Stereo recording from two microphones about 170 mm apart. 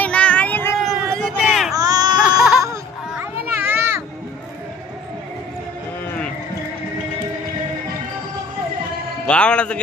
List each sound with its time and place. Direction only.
0.0 s child singing: 5° left (ahead or behind)
0.8 s hubbub: centre (ahead or behind)
1.8 s baby cry: 20° right (ahead or behind)
2.1 s baby cry: 5° right (ahead or behind)
9.2 s a man's voice: 5° left (ahead or behind)